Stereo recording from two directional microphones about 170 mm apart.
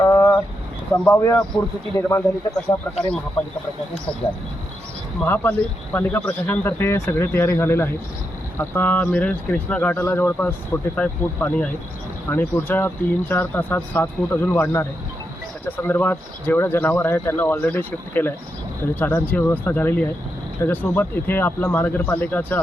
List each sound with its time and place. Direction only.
0.1 s vehicle: 20° left (ahead or behind)
1.0 s speech: 15° left (ahead or behind)
5.2 s speech: 10° left (ahead or behind)